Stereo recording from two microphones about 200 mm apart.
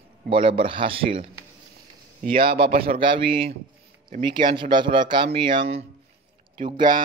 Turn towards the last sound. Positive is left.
turn(degrees=-25)  # may be behind; listen again after turning